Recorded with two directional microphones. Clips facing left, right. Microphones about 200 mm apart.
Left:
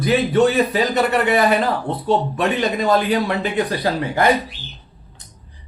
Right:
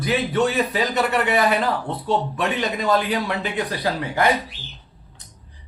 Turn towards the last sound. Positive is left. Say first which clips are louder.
# left 3 dB
turn(degrees=40)  # may be behind; listen again after turning